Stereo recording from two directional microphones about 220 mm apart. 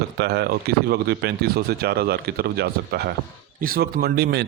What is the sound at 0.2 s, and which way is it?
Speech, 45° right (ahead or behind).